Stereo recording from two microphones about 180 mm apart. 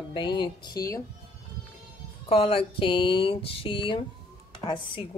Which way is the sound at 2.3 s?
30° left (ahead or behind).